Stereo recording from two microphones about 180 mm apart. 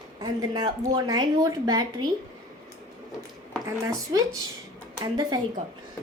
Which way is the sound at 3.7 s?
20° right (ahead or behind).